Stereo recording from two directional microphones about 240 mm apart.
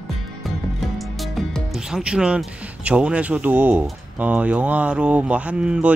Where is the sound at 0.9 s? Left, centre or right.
Centre.